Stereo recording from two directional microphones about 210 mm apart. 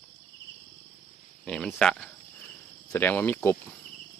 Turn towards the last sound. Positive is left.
turn(degrees=10)  # may be behind; listen again after turning